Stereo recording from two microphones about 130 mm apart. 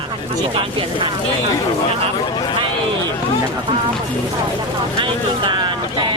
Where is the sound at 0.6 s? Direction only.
40° right (ahead or behind).